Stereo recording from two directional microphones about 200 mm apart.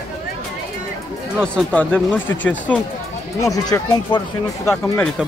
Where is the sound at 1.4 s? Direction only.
5° left (ahead or behind).